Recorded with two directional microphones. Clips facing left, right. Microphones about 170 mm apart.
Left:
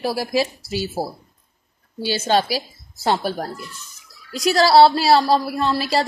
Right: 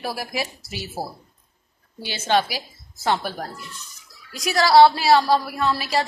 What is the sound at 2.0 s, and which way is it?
A woman's voice, 35° left (ahead or behind).